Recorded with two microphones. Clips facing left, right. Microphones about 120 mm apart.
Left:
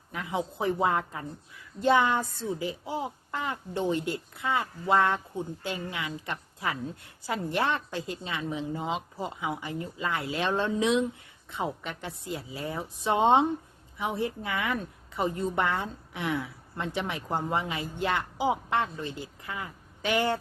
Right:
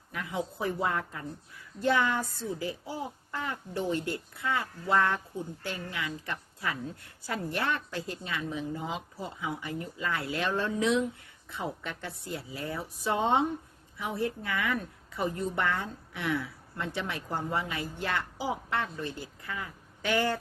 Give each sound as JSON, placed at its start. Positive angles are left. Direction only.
{"t": 0.1, "sound": "a woman's voice", "side_deg": 20}